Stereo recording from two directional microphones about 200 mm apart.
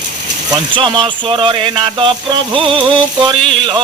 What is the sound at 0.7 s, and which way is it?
Speech, 25° right (ahead or behind).